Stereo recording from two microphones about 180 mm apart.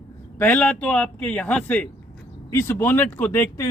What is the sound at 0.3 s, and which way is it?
Speech, 10° left (ahead or behind).